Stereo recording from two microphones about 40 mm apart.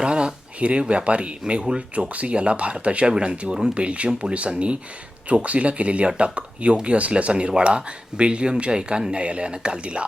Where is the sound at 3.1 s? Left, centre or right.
Centre.